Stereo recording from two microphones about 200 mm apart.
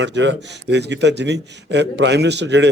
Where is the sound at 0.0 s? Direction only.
65° right (ahead or behind).